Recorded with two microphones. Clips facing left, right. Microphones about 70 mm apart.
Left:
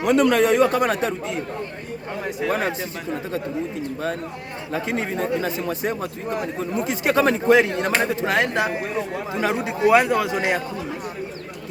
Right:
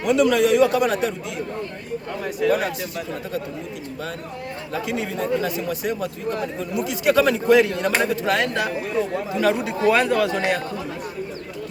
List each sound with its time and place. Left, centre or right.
0.0 s speech: left
2.2 s speech: left
4.7 s speech: left